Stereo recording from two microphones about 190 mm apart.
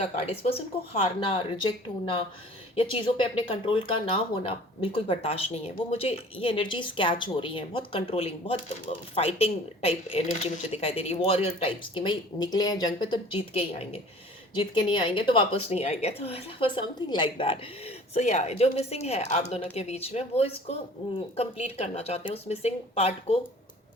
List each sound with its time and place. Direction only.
0.0 s speech: 35° left (ahead or behind)